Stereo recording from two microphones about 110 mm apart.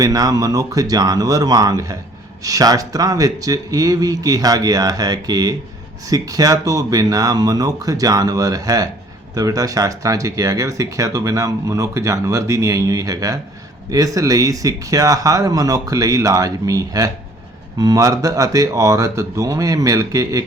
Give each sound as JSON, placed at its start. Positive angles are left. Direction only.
{"t": 0.0, "sound": "speech", "side_deg": -35}